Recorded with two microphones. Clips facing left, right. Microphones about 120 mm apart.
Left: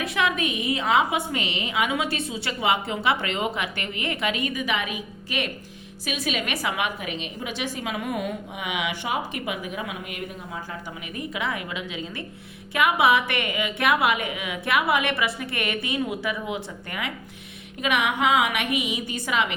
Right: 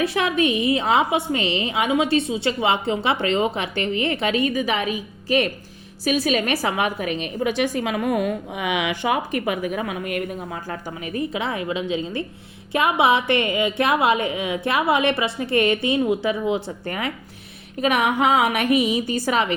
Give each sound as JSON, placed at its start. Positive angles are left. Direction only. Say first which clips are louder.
{"t": 0.0, "sound": "a woman's voice", "louder": "right 5 dB", "side_deg": -35}
{"t": 11.0, "sound": "a woman's voice", "louder": "right 5 dB", "side_deg": -35}